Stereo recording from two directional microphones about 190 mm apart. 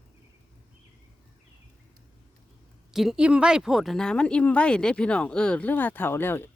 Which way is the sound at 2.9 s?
5° right (ahead or behind).